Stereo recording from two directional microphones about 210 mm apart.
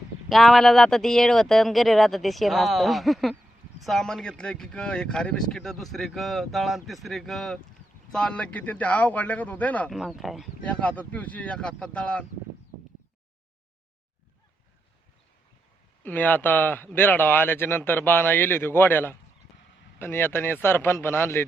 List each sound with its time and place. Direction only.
0.3 s speech: centre (ahead or behind)
16.0 s speech: 10° left (ahead or behind)